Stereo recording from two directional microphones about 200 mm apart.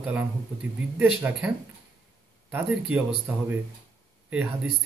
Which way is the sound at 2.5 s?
5° right (ahead or behind).